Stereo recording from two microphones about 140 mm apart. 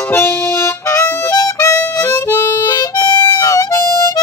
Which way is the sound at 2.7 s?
30° left (ahead or behind).